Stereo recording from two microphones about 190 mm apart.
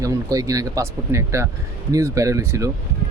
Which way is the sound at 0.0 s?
15° right (ahead or behind).